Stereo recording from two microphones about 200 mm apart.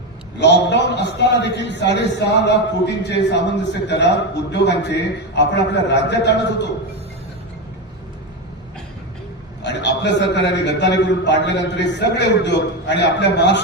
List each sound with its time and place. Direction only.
0.3 s a man's voice: 60° left (ahead or behind)
9.6 s a man's voice: 60° left (ahead or behind)